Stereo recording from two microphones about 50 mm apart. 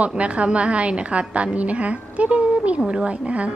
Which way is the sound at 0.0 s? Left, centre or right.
Right.